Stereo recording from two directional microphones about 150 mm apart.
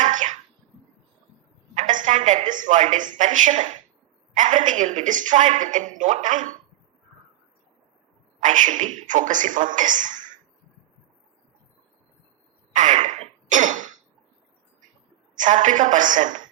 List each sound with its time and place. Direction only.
0.0 s a sound: 55° right (ahead or behind)
1.7 s a woman's voice: 55° right (ahead or behind)
8.4 s a woman's voice: 55° right (ahead or behind)
12.7 s throat clearing: 55° right (ahead or behind)
15.4 s a woman's voice: 55° right (ahead or behind)